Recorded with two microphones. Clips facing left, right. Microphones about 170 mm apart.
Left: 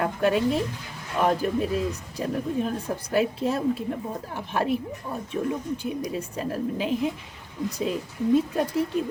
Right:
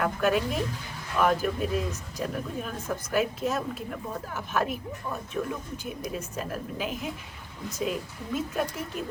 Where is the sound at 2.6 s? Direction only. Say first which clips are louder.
Left 4 dB; 30° left (ahead or behind).